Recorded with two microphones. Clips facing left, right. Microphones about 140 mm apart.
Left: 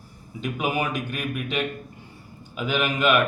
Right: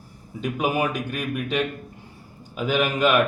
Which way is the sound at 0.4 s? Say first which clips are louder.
Right 2 dB; 40° right (ahead or behind).